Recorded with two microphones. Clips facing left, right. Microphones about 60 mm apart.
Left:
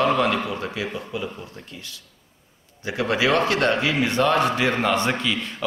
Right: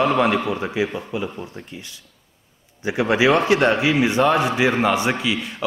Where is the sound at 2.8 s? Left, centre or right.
Centre.